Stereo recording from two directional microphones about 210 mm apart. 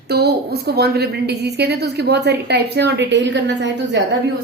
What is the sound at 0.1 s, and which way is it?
A woman's voice, 50° right (ahead or behind).